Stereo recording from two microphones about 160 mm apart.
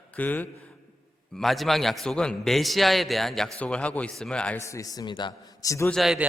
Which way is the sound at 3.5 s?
10° left (ahead or behind).